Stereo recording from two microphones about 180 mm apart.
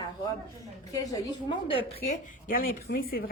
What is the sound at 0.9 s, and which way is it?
A woman's voice, 25° left (ahead or behind).